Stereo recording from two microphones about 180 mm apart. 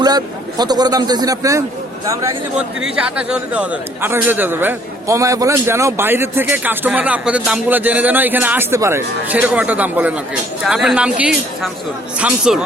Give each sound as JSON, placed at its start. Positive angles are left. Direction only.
{"t": 0.0, "sound": "a man's voice", "side_deg": -20}
{"t": 2.6, "sound": "a man's voice", "side_deg": -5}